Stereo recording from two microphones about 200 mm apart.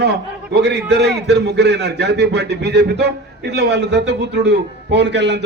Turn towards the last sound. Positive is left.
turn(degrees=-60)  # may be behind; listen again after turning